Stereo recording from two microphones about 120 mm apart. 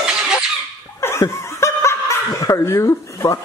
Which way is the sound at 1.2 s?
25° left (ahead or behind).